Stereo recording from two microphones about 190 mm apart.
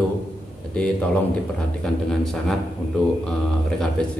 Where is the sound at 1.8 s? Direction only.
5° left (ahead or behind).